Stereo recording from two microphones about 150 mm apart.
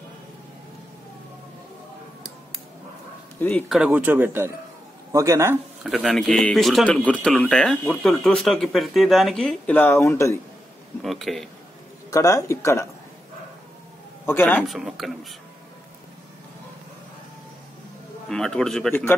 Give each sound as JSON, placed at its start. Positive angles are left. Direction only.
{"t": 3.3, "sound": "speech", "side_deg": 10}
{"t": 3.6, "sound": "speech", "side_deg": 0}
{"t": 3.9, "sound": "speech", "side_deg": -10}
{"t": 5.9, "sound": "speech", "side_deg": -5}
{"t": 11.0, "sound": "speech", "side_deg": 0}
{"t": 12.1, "sound": "speech", "side_deg": 20}
{"t": 14.2, "sound": "a man's voice", "side_deg": 15}
{"t": 14.6, "sound": "speech", "side_deg": 0}
{"t": 18.3, "sound": "speech", "side_deg": 5}